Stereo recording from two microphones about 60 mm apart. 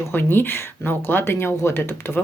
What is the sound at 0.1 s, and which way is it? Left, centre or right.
Speech, left.